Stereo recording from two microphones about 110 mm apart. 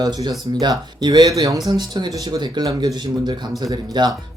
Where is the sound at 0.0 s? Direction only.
40° right (ahead or behind).